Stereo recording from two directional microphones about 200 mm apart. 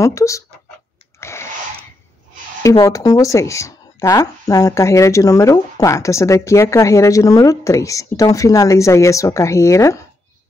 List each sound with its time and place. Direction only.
0.0 s speech: 15° left (ahead or behind)
1.2 s a sound: 15° left (ahead or behind)
2.8 s speech: 15° left (ahead or behind)